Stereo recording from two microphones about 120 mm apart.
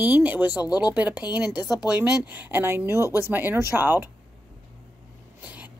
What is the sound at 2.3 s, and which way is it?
Speech, 15° right (ahead or behind).